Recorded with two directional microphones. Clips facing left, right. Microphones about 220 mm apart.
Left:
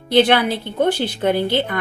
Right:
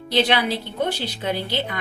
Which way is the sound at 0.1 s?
55° left (ahead or behind).